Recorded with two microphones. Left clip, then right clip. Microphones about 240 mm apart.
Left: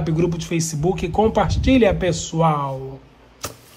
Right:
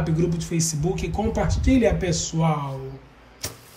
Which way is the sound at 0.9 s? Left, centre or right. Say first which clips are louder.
Left 8 dB; centre.